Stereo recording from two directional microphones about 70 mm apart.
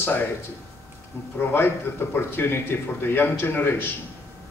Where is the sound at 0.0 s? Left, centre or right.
Left.